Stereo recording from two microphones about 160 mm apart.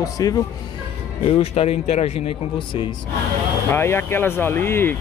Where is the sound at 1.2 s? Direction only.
35° left (ahead or behind).